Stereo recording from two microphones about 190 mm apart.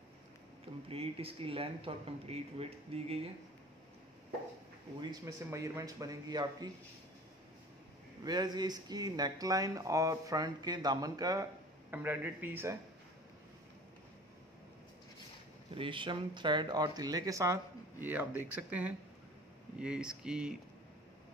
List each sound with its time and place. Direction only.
0.8 s speech: 30° right (ahead or behind)
5.0 s speech: 20° right (ahead or behind)
8.2 s speech: 20° right (ahead or behind)
15.7 s speech: 25° right (ahead or behind); by 20.5 s 5° right (ahead or behind)